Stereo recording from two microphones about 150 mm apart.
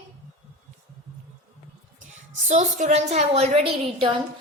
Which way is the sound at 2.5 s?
55° right (ahead or behind).